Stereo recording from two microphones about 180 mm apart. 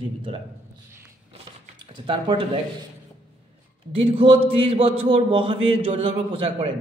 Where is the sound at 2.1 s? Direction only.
30° right (ahead or behind).